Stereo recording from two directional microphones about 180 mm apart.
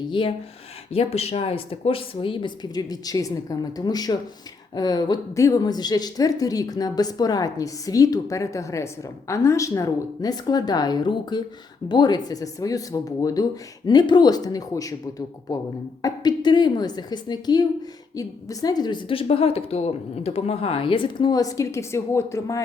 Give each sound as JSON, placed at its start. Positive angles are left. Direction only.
{"t": 0.1, "sound": "a woman's voice", "side_deg": 30}
{"t": 16.0, "sound": "a woman's voice", "side_deg": 20}